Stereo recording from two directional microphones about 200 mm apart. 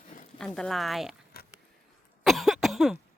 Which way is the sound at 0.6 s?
Centre (ahead or behind).